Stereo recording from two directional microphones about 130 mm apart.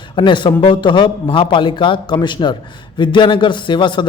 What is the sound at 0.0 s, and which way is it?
A man's voice, 35° left (ahead or behind).